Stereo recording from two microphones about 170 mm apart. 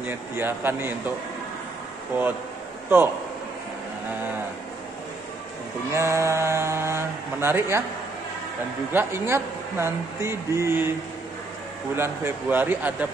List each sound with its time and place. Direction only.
0.0 s speech: 15° right (ahead or behind)
2.9 s speech: 15° right (ahead or behind)
5.9 s speech: 15° right (ahead or behind)
8.9 s speech: 15° right (ahead or behind)
11.9 s speech: 15° right (ahead or behind)